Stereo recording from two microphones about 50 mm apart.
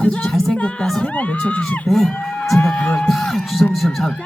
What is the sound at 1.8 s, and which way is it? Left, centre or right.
Speech, centre.